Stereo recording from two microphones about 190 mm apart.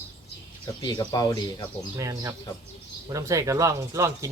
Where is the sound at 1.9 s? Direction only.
15° right (ahead or behind).